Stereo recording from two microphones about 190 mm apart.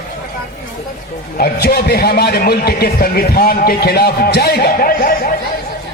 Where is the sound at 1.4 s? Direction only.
55° left (ahead or behind).